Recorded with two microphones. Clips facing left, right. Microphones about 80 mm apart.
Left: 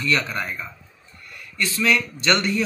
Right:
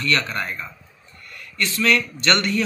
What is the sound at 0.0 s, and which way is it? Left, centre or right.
A man's voice, centre.